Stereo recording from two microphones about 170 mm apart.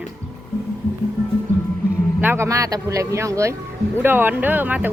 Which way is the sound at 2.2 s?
15° right (ahead or behind).